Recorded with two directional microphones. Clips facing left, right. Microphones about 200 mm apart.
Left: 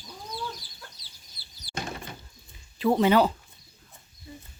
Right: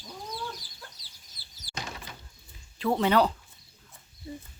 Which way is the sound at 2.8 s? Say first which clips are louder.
Left 3 dB; 5° left (ahead or behind).